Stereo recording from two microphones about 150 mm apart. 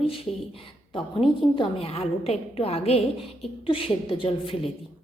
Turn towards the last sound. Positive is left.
turn(degrees=40)  # may be behind; listen again after turning